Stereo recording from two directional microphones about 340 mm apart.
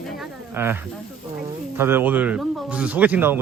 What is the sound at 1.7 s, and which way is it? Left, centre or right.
A man's voice, centre.